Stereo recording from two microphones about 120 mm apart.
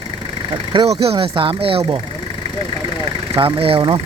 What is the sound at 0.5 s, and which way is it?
Speech, 40° right (ahead or behind).